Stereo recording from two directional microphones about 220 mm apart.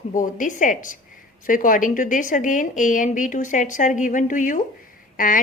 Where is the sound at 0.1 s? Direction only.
35° left (ahead or behind).